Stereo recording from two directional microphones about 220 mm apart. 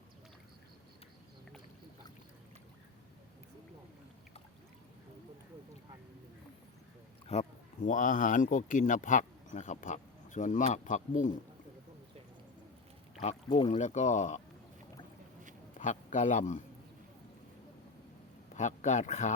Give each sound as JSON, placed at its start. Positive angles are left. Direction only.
{"t": 7.3, "sound": "speech", "side_deg": 30}
{"t": 13.2, "sound": "speech", "side_deg": 30}
{"t": 15.8, "sound": "a man's voice", "side_deg": 35}
{"t": 18.5, "sound": "speech", "side_deg": 35}